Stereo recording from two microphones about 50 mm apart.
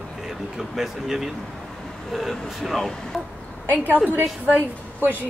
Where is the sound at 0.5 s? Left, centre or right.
Centre.